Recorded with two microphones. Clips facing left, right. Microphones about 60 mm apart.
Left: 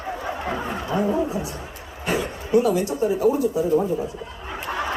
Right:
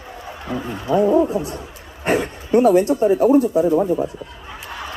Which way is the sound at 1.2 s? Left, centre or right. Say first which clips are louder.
Right 7 dB; right.